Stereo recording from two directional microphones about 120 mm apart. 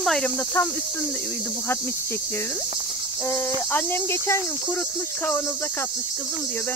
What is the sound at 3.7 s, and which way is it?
Speech, 20° left (ahead or behind).